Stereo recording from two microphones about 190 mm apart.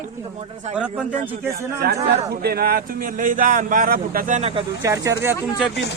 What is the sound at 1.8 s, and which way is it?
A man's voice, 55° right (ahead or behind).